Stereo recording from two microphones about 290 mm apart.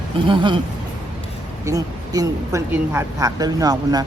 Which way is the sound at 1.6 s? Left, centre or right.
Centre.